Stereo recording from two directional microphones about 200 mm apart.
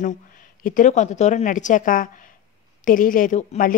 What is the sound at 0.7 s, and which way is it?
A woman's voice, 40° left (ahead or behind).